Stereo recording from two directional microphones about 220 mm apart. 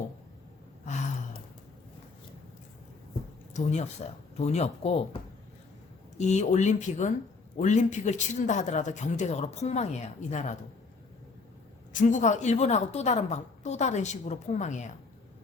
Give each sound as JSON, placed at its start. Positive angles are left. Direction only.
{"t": 0.9, "sound": "gasp", "side_deg": 35}
{"t": 3.5, "sound": "speech", "side_deg": 30}
{"t": 6.1, "sound": "a man's voice", "side_deg": 30}
{"t": 11.9, "sound": "a man's voice", "side_deg": 35}